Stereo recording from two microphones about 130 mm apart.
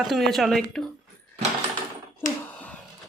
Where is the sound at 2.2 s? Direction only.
90° left.